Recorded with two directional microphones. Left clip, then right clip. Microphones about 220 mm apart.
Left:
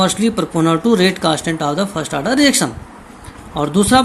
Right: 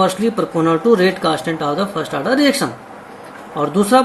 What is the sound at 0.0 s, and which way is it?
Speech, 30° left (ahead or behind).